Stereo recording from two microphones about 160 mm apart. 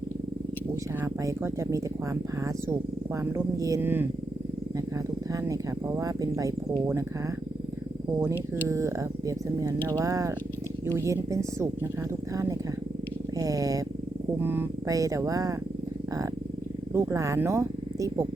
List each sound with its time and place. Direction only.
1.0 s speech: 20° right (ahead or behind)
3.2 s speech: 20° right (ahead or behind)
5.3 s speech: 20° right (ahead or behind)
8.6 s speech: 20° right (ahead or behind)
13.4 s speech: 20° right (ahead or behind)
16.9 s speech: 20° right (ahead or behind)